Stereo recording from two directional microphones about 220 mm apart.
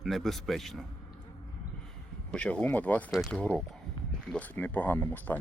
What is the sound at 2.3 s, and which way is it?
Speech, 5° left (ahead or behind).